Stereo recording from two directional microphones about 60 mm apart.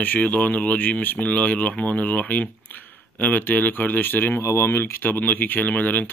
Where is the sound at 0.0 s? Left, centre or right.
Left.